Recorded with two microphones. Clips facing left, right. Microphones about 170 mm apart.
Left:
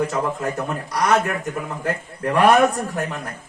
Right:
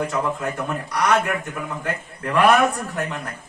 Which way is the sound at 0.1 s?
30° left (ahead or behind).